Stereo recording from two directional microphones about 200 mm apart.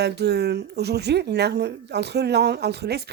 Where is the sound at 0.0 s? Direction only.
55° right (ahead or behind).